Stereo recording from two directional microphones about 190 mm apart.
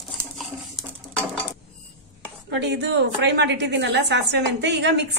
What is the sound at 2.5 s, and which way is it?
A woman's voice, 65° right (ahead or behind).